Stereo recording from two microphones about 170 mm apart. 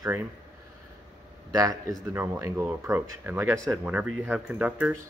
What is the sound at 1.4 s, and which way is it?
A man's voice, 20° right (ahead or behind).